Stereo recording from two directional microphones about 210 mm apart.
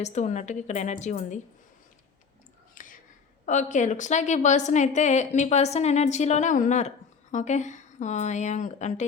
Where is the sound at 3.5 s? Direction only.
35° left (ahead or behind).